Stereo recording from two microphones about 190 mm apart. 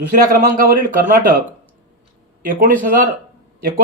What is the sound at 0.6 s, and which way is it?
Speech, 45° right (ahead or behind).